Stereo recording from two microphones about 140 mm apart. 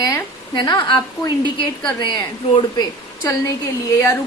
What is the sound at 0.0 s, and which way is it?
A woman's voice, 30° left (ahead or behind).